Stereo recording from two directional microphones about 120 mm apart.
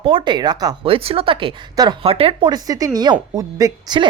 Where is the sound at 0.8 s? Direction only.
50° right (ahead or behind).